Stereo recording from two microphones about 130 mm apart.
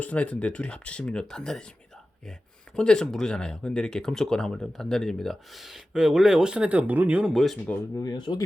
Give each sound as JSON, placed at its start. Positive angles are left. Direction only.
{"t": 0.0, "sound": "speech", "side_deg": 10}
{"t": 2.7, "sound": "speech", "side_deg": 5}
{"t": 7.9, "sound": "speech", "side_deg": 30}